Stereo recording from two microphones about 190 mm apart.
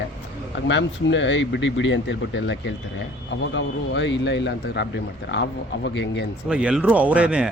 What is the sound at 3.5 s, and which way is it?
Speech, 70° left (ahead or behind).